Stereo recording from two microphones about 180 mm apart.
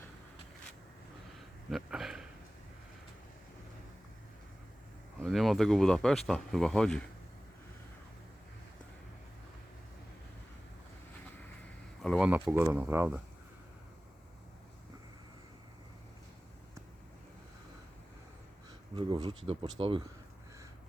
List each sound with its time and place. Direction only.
1.7 s a sound: centre (ahead or behind)
5.2 s speech: centre (ahead or behind)
12.0 s speech: 5° right (ahead or behind)
18.9 s speech: 25° right (ahead or behind)